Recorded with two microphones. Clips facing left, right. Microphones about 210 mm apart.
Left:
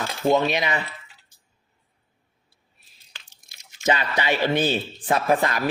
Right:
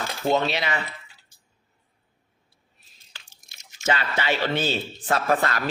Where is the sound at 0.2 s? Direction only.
15° left (ahead or behind).